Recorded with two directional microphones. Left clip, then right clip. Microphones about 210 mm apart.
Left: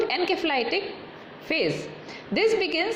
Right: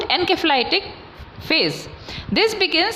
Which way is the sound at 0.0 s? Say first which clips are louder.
Right 6 dB; 20° right (ahead or behind).